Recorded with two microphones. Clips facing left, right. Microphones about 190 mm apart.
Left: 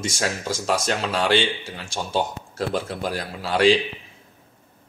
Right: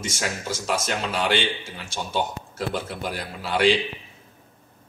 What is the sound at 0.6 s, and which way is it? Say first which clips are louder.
Speech: left 3 dB; 40° left (ahead or behind).